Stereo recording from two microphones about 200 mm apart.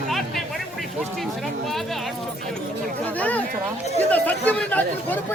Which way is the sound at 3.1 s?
10° left (ahead or behind).